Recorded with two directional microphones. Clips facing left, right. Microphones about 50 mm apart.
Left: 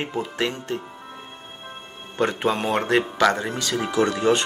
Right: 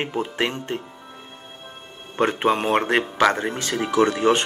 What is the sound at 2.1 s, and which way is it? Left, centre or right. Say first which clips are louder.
Speech: right 2 dB; right.